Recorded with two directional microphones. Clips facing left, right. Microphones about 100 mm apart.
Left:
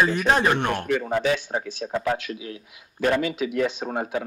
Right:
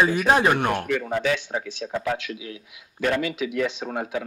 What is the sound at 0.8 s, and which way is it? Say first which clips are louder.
Speech: left 1 dB; 35° left (ahead or behind).